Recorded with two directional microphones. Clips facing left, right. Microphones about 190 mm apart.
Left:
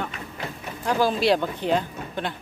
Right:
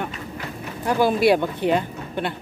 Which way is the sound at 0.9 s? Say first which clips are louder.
Right 3 dB; 10° right (ahead or behind).